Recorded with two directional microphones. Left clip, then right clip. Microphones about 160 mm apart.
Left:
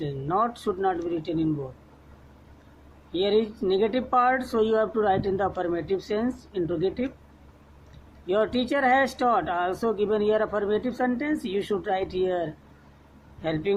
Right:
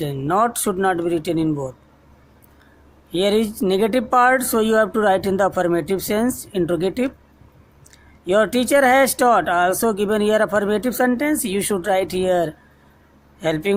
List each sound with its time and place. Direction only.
0.0 s speech: 65° right (ahead or behind)
3.1 s speech: 65° right (ahead or behind)
8.3 s speech: 60° right (ahead or behind)